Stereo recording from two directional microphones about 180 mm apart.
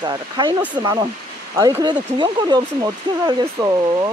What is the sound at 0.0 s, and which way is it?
Speech, 25° right (ahead or behind).